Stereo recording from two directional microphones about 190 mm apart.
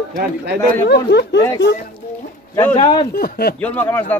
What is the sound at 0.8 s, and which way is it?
Speech, 60° left (ahead or behind).